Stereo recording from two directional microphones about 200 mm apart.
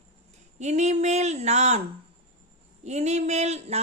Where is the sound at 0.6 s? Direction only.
35° right (ahead or behind).